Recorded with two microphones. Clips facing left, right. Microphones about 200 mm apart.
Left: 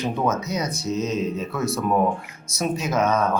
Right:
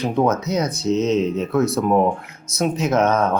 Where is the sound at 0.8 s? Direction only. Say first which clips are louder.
Right 7 dB; 20° right (ahead or behind).